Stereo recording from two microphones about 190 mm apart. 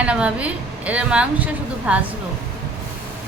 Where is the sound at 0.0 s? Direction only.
5° right (ahead or behind).